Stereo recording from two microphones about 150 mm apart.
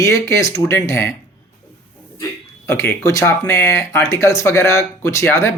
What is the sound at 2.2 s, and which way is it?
A man's voice, 20° left (ahead or behind).